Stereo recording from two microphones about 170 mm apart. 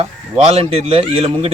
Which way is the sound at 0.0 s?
35° right (ahead or behind).